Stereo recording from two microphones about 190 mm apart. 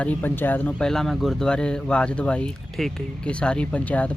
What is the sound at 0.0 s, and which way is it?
Speech, 10° left (ahead or behind).